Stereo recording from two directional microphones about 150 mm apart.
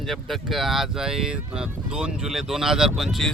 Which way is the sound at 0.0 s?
Centre (ahead or behind).